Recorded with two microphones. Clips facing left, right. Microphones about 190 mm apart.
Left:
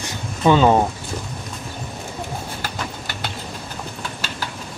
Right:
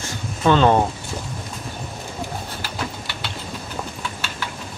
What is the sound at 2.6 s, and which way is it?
Bird, 45° left (ahead or behind).